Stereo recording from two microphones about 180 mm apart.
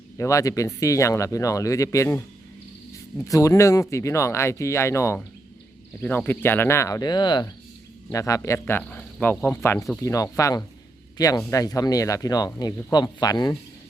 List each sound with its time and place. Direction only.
0.2 s speech: 15° left (ahead or behind)
3.2 s speech: 20° left (ahead or behind)